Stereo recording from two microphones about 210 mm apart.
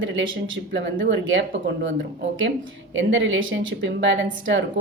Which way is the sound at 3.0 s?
65° right (ahead or behind).